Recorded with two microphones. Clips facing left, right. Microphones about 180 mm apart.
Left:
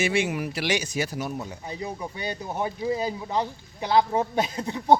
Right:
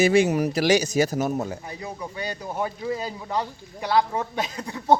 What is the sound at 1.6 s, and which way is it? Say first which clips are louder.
Speech: left 1 dB; 20° left (ahead or behind).